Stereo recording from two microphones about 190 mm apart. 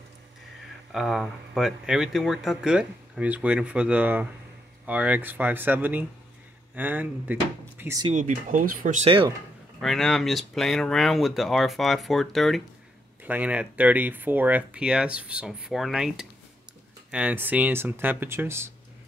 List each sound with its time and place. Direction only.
0.9 s speech: centre (ahead or behind)
8.1 s speech: 45° right (ahead or behind)
9.8 s speech: centre (ahead or behind)